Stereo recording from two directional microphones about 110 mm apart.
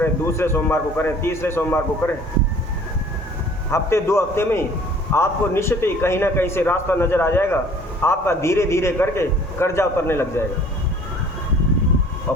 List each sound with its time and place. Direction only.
0.0 s a man's voice: 25° left (ahead or behind)
3.7 s a man's voice: 25° left (ahead or behind)